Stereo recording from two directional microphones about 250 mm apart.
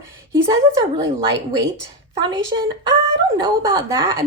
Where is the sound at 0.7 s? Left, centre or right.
Centre.